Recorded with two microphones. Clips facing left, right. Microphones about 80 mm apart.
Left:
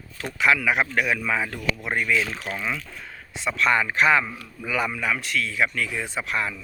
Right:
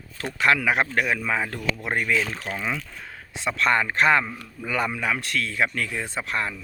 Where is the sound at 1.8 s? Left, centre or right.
Right.